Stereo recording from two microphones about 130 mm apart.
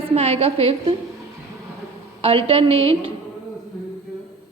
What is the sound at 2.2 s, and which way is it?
Speech, 45° right (ahead or behind).